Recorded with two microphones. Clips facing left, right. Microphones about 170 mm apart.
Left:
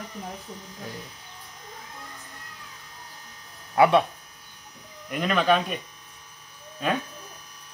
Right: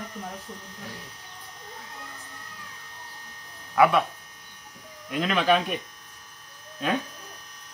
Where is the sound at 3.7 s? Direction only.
30° left (ahead or behind).